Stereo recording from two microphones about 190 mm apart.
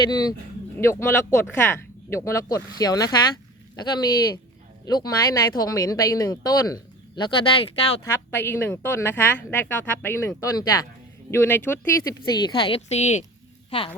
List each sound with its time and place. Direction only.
0.1 s speech: 20° left (ahead or behind)